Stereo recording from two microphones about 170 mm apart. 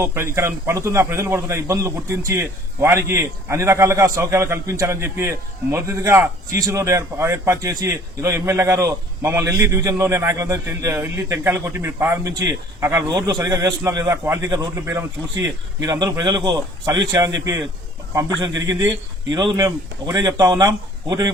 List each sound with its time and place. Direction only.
0.0 s a man's voice: 15° right (ahead or behind)
13.1 s a man's voice: 25° right (ahead or behind)
19.5 s a man's voice: 20° right (ahead or behind)